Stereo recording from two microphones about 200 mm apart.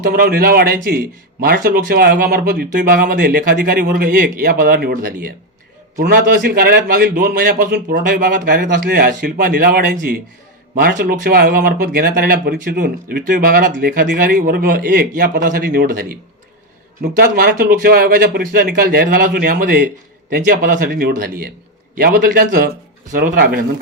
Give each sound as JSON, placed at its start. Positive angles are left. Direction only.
{"t": 0.1, "sound": "a man's voice", "side_deg": -50}